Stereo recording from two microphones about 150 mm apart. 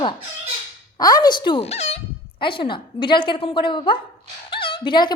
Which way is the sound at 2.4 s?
35° left (ahead or behind).